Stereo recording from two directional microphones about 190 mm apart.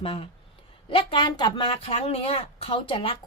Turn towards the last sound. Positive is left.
turn(degrees=30)  # may be behind; listen again after turning